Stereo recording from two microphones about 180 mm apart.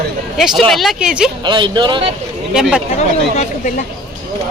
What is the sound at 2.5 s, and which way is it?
Speech, 5° right (ahead or behind).